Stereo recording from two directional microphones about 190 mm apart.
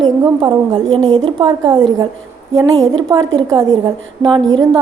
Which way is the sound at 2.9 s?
25° right (ahead or behind).